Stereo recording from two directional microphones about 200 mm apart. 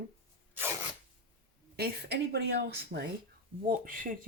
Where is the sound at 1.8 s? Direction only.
50° right (ahead or behind).